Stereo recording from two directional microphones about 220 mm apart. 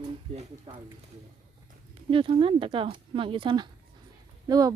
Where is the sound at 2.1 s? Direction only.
25° right (ahead or behind).